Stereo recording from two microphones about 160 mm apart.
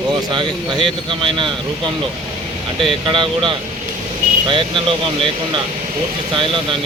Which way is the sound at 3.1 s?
30° right (ahead or behind).